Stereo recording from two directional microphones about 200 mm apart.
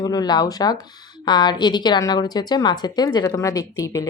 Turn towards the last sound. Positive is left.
turn(degrees=15)  # may be behind; listen again after turning